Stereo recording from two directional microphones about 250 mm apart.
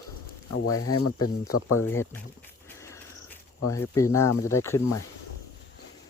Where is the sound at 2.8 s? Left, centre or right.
Centre.